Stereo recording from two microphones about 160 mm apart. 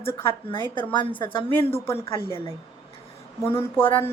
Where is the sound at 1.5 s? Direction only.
15° left (ahead or behind).